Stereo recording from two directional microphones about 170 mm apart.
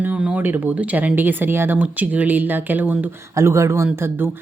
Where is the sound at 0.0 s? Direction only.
10° right (ahead or behind).